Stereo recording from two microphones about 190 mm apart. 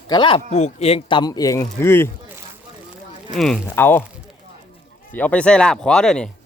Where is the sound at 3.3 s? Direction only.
Centre (ahead or behind).